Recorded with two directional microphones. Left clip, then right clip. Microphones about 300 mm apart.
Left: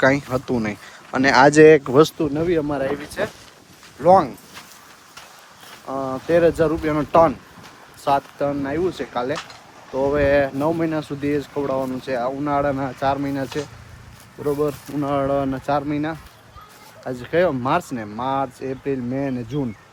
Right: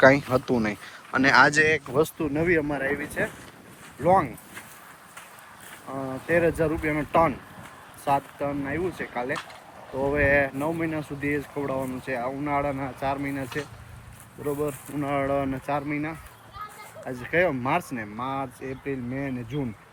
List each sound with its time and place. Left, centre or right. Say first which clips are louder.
0.0 s speech: even; centre
6.2 s speech: left 6 dB; centre